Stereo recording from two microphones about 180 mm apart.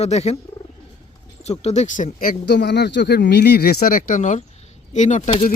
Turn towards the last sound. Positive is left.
turn(degrees=40)  # may be behind; listen again after turning